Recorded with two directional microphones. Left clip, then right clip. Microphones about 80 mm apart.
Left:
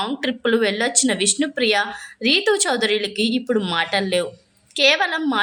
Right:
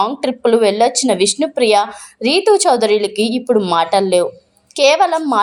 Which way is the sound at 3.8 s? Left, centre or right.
Right.